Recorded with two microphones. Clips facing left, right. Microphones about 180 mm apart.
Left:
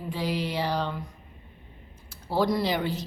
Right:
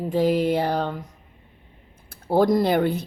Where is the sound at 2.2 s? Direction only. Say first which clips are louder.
Right 6 dB; 50° right (ahead or behind).